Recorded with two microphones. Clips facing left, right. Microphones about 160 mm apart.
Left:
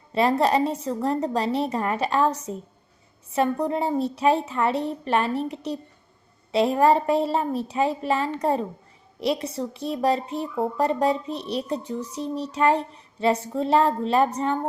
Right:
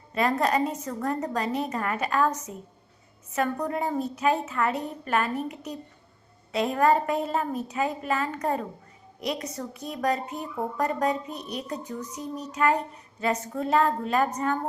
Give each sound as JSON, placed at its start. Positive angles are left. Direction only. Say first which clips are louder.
{"t": 0.1, "sound": "speech", "louder": "left 4 dB", "side_deg": 30}